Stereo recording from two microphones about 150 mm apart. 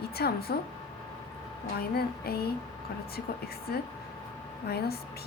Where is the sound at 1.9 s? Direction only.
90° left.